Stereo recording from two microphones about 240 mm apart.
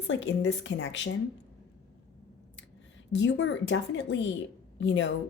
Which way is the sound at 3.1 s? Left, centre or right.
Left.